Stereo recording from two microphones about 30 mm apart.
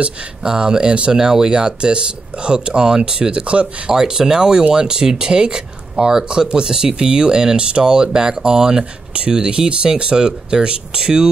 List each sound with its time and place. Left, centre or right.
0.4 s speech: right
1.1 s speech: right
3.9 s speech: right